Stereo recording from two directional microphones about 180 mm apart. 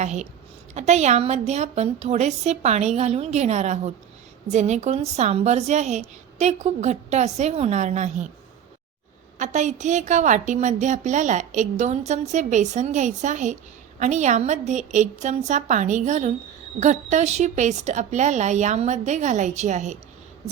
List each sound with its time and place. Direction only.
0.0 s a woman's voice: 40° right (ahead or behind)
9.4 s a woman's voice: 40° right (ahead or behind)